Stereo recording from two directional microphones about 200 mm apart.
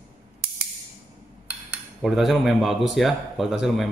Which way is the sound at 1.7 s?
Centre (ahead or behind).